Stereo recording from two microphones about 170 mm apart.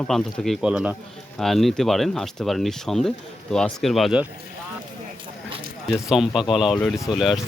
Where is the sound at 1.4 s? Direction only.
Centre (ahead or behind).